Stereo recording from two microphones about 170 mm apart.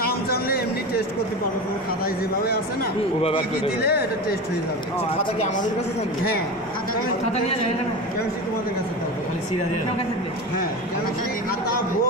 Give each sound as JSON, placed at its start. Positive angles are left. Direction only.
{"t": 0.1, "sound": "a sound", "side_deg": 65}
{"t": 3.2, "sound": "a man's voice", "side_deg": 35}
{"t": 3.8, "sound": "speech", "side_deg": 70}